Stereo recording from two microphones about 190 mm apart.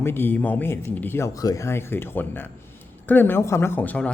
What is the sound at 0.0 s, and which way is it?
Speech, 10° left (ahead or behind).